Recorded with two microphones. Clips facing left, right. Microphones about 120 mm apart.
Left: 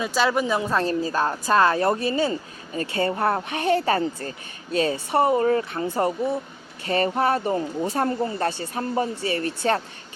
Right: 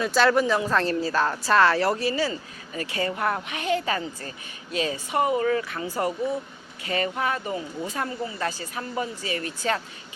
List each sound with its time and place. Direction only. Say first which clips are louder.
0.0 s a woman's voice: right 2 dB; 10° left (ahead or behind); by 8.4 s 45° left (ahead or behind)
8.4 s a woman's voice: left 5 dB; 30° left (ahead or behind)